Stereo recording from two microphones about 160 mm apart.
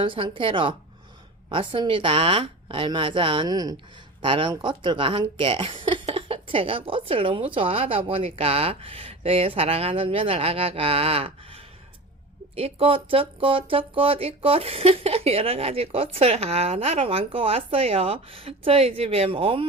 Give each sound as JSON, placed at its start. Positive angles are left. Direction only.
{"t": 0.0, "sound": "speech", "side_deg": -35}